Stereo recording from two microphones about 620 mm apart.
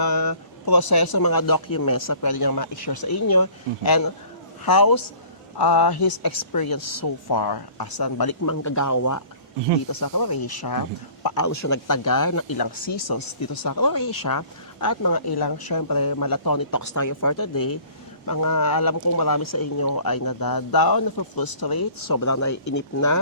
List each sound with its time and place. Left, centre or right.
0.0 s speech: left